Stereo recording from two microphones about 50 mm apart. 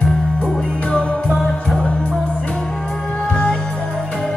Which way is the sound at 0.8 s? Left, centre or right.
Centre.